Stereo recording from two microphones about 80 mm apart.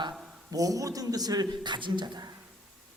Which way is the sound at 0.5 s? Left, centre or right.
Right.